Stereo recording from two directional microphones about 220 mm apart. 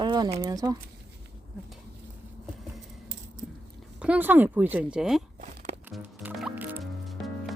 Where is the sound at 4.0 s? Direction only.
5° right (ahead or behind).